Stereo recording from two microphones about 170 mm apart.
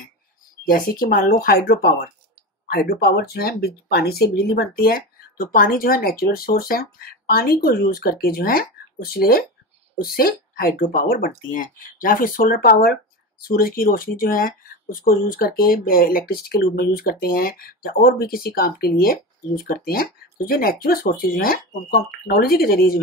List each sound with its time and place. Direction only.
0.7 s speech: 55° left (ahead or behind)